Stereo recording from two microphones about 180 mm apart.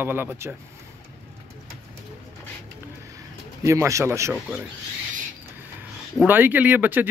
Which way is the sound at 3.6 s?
15° right (ahead or behind).